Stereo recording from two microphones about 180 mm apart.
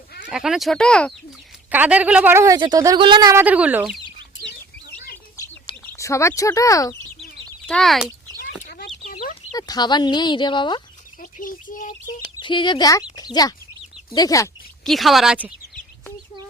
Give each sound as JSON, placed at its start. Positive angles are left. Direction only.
{"t": 0.3, "sound": "speech", "side_deg": -5}
{"t": 1.7, "sound": "speech", "side_deg": -10}
{"t": 3.4, "sound": "speech", "side_deg": -10}
{"t": 5.8, "sound": "speech", "side_deg": 10}
{"t": 7.7, "sound": "speech", "side_deg": 0}
{"t": 8.4, "sound": "a sound", "side_deg": 55}
{"t": 9.5, "sound": "speech", "side_deg": 20}
{"t": 11.2, "sound": "chirp", "side_deg": 50}
{"t": 12.4, "sound": "speech", "side_deg": 25}
{"t": 14.8, "sound": "speech", "side_deg": 0}